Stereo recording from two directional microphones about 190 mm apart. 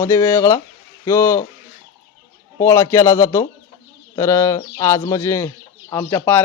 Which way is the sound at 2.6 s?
15° left (ahead or behind).